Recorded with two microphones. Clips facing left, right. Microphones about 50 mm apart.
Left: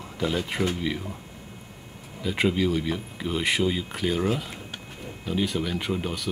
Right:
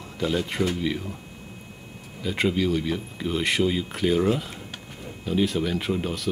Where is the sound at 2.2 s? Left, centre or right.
Centre.